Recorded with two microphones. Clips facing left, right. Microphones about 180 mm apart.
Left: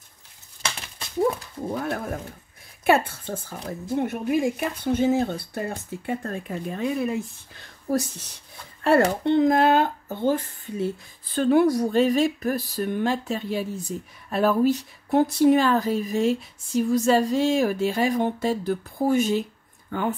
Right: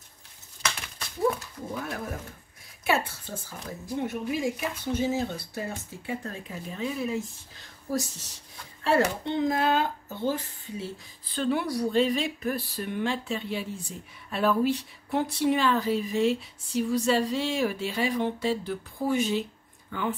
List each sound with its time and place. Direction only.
1.6 s speech: 30° left (ahead or behind)
2.8 s speech: 55° left (ahead or behind)